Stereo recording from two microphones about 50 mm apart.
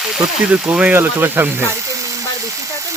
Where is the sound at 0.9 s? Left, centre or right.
Right.